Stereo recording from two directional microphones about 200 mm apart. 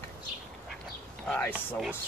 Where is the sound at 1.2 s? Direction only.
5° left (ahead or behind).